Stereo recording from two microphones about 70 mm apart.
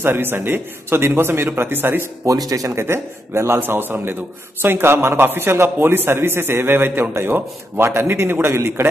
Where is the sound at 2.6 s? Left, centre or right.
Right.